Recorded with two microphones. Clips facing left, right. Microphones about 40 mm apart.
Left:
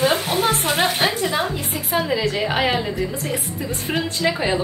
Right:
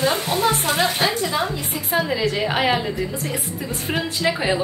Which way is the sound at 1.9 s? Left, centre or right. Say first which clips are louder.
Even; centre.